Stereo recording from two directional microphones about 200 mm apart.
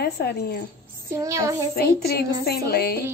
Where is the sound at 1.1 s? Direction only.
15° right (ahead or behind).